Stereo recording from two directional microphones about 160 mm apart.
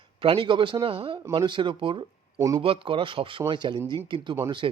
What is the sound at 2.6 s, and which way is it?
Speech, 35° right (ahead or behind).